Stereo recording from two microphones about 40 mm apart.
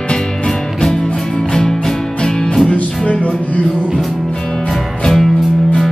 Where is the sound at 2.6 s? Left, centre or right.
Left.